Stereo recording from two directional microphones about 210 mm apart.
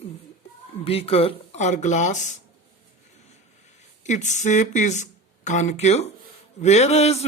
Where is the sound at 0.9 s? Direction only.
30° left (ahead or behind).